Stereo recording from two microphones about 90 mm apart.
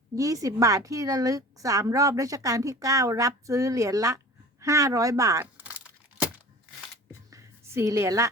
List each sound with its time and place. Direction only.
0.2 s a woman's voice: 40° right (ahead or behind)
5.4 s a sound: 20° right (ahead or behind)
7.1 s music: 35° right (ahead or behind)